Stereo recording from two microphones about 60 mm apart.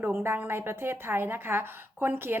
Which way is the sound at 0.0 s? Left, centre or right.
Right.